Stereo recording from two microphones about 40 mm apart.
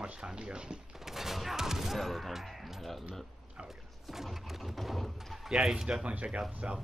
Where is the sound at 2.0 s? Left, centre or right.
Centre.